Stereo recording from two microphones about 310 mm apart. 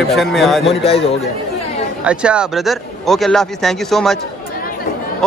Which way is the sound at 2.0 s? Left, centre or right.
Centre.